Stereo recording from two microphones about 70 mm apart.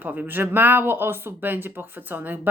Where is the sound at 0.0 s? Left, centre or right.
Right.